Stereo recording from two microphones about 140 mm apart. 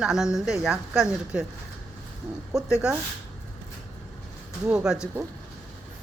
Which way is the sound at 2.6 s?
5° right (ahead or behind).